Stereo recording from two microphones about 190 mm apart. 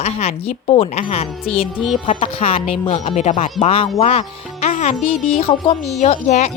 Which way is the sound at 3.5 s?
30° left (ahead or behind).